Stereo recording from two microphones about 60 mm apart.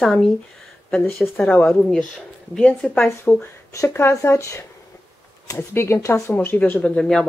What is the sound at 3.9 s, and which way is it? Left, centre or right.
Speech, left.